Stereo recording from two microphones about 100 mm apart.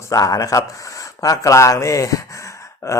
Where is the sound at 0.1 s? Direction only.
35° left (ahead or behind).